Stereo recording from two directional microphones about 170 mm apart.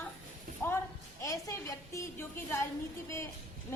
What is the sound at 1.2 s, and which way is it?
A woman's voice, 20° left (ahead or behind).